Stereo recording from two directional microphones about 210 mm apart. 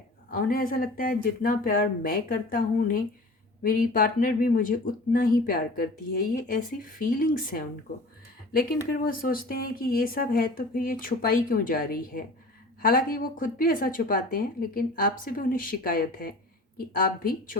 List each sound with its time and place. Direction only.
0.3 s a woman's voice: 45° left (ahead or behind)
9.0 s a woman's voice: 45° left (ahead or behind)